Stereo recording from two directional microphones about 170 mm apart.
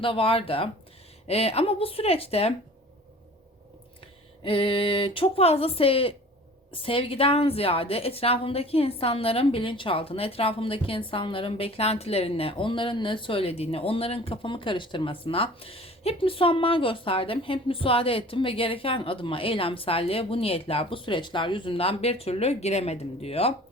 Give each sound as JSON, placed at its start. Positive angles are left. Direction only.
{"t": 0.0, "sound": "a woman's voice", "side_deg": 30}
{"t": 4.4, "sound": "a woman's voice", "side_deg": 35}